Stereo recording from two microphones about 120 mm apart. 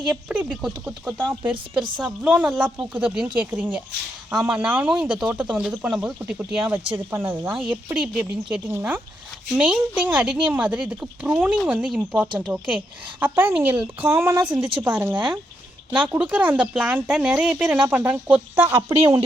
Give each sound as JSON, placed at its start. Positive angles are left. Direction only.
{"t": 0.0, "sound": "speech", "side_deg": -10}
{"t": 7.9, "sound": "speech", "side_deg": -5}